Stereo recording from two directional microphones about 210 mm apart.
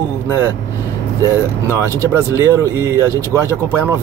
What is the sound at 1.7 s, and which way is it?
Speech, 15° right (ahead or behind).